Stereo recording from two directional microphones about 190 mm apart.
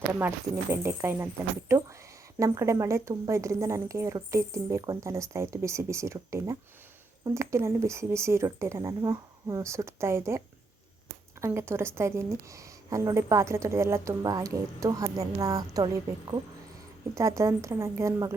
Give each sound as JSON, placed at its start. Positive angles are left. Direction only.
{"t": 0.2, "sound": "a woman's voice", "side_deg": -15}